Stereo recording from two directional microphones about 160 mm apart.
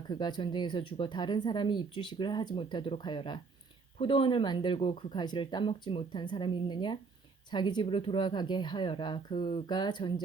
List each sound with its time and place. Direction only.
0.1 s speech: 25° left (ahead or behind)